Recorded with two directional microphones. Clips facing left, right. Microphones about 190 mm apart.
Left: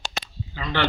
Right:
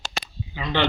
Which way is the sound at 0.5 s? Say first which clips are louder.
Right 2 dB; 15° right (ahead or behind).